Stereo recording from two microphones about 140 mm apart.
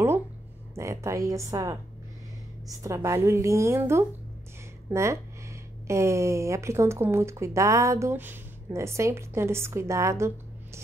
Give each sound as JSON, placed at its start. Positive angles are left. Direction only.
{"t": 0.7, "sound": "speech", "side_deg": -20}